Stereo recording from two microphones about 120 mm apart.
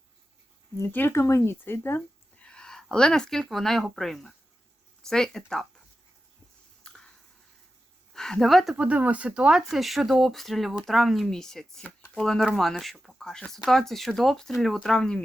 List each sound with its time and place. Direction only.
0.8 s speech: 15° left (ahead or behind)
2.4 s speech: 5° left (ahead or behind)
8.1 s speech: 5° left (ahead or behind)
8.7 s speech: 10° right (ahead or behind); by 15.2 s 5° left (ahead or behind)